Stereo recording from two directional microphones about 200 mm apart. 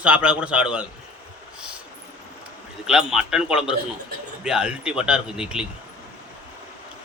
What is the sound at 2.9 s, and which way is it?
A man's voice, 5° right (ahead or behind).